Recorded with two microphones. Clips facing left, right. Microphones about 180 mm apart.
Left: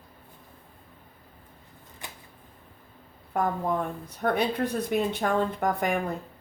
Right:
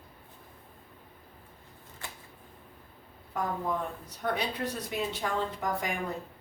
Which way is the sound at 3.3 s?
55° left (ahead or behind).